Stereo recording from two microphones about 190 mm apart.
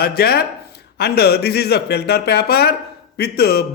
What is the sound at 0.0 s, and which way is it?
A man's voice, 55° left (ahead or behind).